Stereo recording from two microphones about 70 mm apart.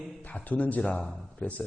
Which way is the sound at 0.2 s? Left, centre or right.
Left.